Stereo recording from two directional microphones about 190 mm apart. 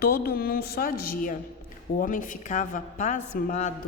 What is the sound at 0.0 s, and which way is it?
A woman's voice, 55° left (ahead or behind).